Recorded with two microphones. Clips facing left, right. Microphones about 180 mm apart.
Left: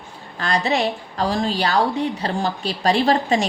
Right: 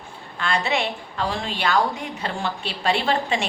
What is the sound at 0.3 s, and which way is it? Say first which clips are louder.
A woman's voice: left 3 dB; 40° left (ahead or behind).